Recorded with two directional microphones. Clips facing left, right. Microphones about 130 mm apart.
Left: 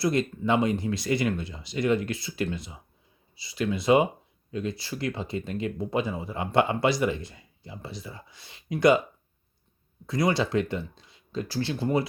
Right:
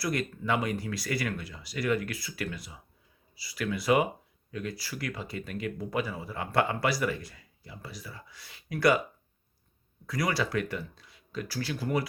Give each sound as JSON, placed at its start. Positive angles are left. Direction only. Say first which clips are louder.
{"t": 0.0, "sound": "speech", "louder": "left 6 dB", "side_deg": 25}
{"t": 10.1, "sound": "speech", "louder": "left 5 dB", "side_deg": 25}